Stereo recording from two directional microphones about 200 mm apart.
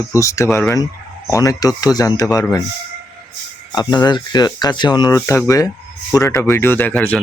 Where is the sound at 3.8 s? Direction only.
20° left (ahead or behind).